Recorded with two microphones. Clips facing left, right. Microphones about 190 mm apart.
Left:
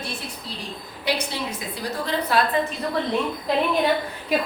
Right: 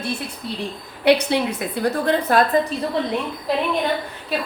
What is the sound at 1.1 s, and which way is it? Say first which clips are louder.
A woman's voice: right 10 dB; 65° right (ahead or behind).